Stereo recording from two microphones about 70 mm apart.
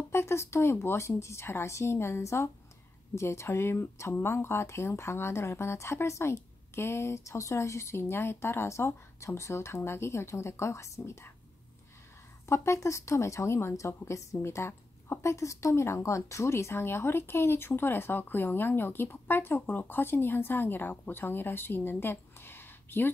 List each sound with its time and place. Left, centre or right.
0.1 s a woman's voice: left
12.4 s a woman's voice: left